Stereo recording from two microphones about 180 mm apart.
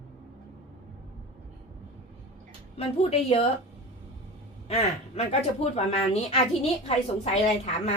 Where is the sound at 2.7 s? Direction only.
35° left (ahead or behind).